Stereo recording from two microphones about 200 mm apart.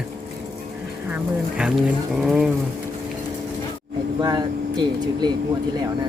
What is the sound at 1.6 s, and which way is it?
Speech, centre (ahead or behind).